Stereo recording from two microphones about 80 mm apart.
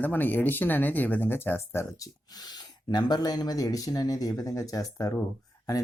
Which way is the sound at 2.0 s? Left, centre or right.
Left.